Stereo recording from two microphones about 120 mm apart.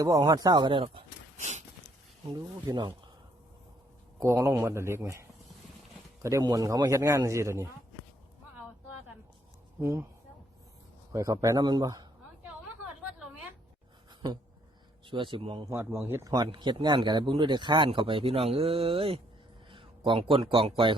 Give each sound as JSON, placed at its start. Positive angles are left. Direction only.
{"t": 0.0, "sound": "speech", "side_deg": -30}
{"t": 1.4, "sound": "a sound", "side_deg": -75}
{"t": 2.3, "sound": "speech", "side_deg": -35}
{"t": 4.2, "sound": "speech", "side_deg": -25}
{"t": 6.4, "sound": "speech", "side_deg": -30}
{"t": 9.8, "sound": "speech", "side_deg": -15}
{"t": 11.1, "sound": "speech", "side_deg": -25}
{"t": 14.2, "sound": "speech", "side_deg": -35}
{"t": 15.7, "sound": "speech", "side_deg": -20}
{"t": 16.3, "sound": "speech", "side_deg": -35}